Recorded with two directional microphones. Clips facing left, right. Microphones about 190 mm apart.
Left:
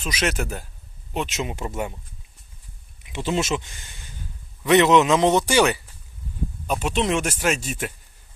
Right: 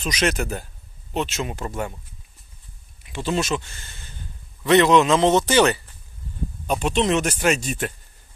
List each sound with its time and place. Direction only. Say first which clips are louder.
0.0 s speech: right 2 dB; 5° left (ahead or behind)
3.0 s speech: even; 20° left (ahead or behind)